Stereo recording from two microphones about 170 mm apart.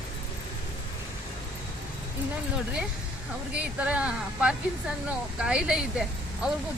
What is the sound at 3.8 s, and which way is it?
Speech, 5° right (ahead or behind).